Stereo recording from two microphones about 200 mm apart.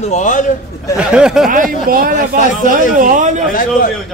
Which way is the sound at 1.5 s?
45° right (ahead or behind).